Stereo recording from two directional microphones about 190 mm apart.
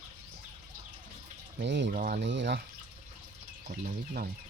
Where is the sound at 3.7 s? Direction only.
50° right (ahead or behind).